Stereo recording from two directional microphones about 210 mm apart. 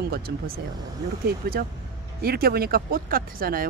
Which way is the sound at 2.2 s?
45° right (ahead or behind).